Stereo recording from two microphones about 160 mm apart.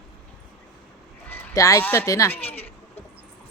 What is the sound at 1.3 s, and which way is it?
Speech, 10° left (ahead or behind).